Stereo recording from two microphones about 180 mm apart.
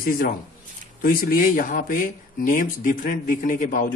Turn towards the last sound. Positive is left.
turn(degrees=50)  # may be behind; listen again after turning